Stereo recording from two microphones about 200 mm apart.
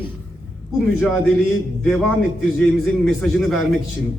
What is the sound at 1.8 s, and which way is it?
A man's voice, centre (ahead or behind).